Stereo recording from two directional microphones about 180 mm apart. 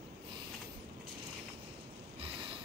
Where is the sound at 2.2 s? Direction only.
30° right (ahead or behind).